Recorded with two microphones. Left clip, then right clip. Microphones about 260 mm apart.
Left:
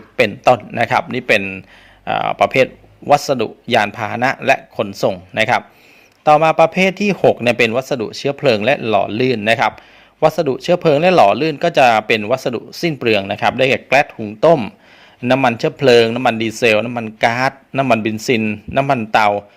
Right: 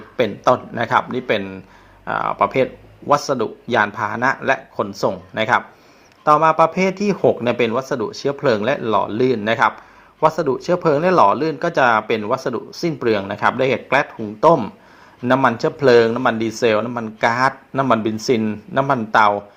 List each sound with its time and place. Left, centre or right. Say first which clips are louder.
0.2 s speech: left 4 dB; left
15.2 s speech: left 2 dB; left